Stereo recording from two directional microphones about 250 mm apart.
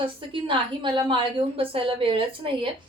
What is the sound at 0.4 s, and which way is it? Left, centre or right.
Speech, centre.